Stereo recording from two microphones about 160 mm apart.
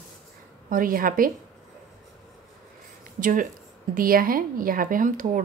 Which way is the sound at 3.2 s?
55° right (ahead or behind).